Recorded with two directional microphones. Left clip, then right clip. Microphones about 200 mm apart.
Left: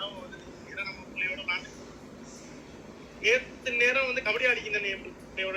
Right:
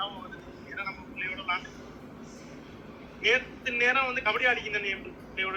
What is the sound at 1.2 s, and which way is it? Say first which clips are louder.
Speech: left 1 dB; 15° right (ahead or behind).